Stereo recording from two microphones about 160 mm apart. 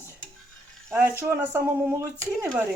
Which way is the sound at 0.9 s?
15° right (ahead or behind).